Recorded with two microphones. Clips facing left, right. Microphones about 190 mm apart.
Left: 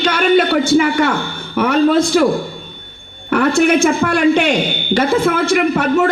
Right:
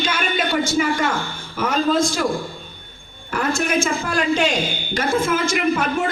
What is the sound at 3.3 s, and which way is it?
A man's voice, 65° left (ahead or behind).